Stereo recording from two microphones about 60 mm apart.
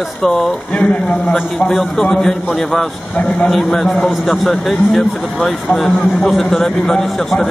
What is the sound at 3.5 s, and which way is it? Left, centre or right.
Speech, centre.